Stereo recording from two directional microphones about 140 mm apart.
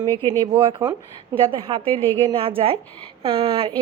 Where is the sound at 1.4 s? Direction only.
40° right (ahead or behind).